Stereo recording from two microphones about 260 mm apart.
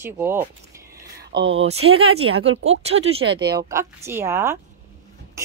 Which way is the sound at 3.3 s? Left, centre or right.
Right.